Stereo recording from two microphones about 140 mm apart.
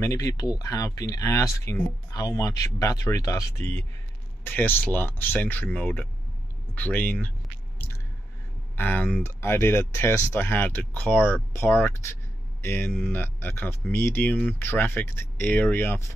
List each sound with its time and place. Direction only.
0.0 s speech: 25° left (ahead or behind)
8.7 s speech: 10° left (ahead or behind)